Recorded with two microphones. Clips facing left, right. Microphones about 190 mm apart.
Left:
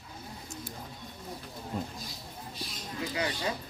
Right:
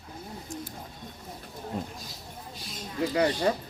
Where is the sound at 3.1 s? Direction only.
45° right (ahead or behind).